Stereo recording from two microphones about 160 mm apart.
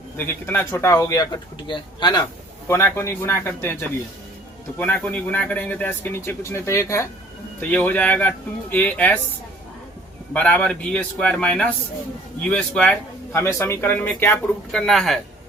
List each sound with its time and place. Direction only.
0.2 s speech: 15° left (ahead or behind); by 2.2 s 30° left (ahead or behind)
2.6 s speech: 15° left (ahead or behind)
10.3 s speech: 10° left (ahead or behind)
13.4 s speech: 15° left (ahead or behind)